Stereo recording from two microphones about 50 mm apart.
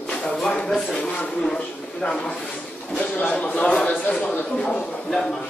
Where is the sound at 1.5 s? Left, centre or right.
Centre.